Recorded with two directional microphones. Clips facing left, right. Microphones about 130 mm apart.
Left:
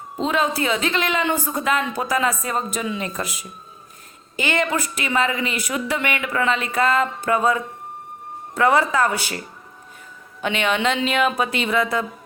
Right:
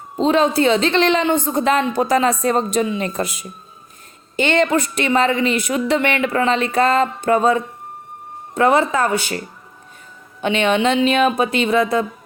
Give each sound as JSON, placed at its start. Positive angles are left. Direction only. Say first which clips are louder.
{"t": 0.2, "sound": "a woman's voice", "louder": "right 6 dB", "side_deg": -25}
{"t": 10.4, "sound": "a woman's voice", "louder": "right 5 dB", "side_deg": -25}